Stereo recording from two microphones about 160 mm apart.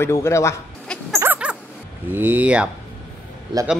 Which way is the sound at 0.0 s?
15° left (ahead or behind).